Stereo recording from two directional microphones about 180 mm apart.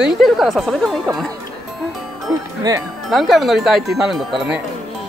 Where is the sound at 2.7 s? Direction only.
20° right (ahead or behind).